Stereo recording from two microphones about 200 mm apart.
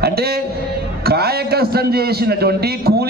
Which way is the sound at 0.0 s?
50° right (ahead or behind).